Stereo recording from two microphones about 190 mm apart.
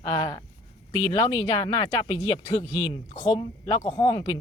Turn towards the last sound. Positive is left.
turn(degrees=25)  # may be behind; listen again after turning